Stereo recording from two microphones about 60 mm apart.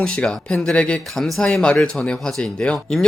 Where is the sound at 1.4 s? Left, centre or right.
Centre.